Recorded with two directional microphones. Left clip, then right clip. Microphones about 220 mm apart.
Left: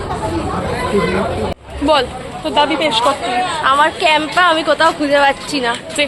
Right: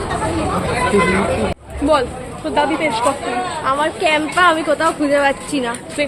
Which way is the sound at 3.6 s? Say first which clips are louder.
Left 4 dB; 10° right (ahead or behind).